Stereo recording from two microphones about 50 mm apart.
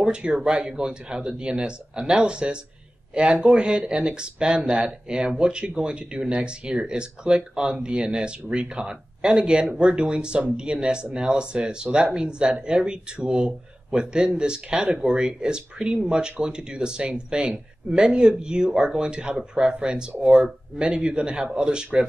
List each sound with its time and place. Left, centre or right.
0.0 s a man's voice: centre